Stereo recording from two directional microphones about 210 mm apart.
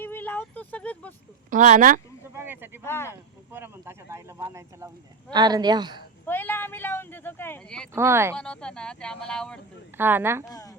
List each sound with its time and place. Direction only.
0.0 s a sound: 10° left (ahead or behind)
1.5 s speech: 35° right (ahead or behind)
2.3 s a sound: 10° right (ahead or behind)
2.8 s speech: 10° left (ahead or behind)
3.1 s speech: 10° right (ahead or behind)
6.2 s speech: 10° left (ahead or behind)
7.9 s speech: 10° right (ahead or behind)
8.4 s speech: 5° left (ahead or behind)
10.0 s speech: 10° right (ahead or behind)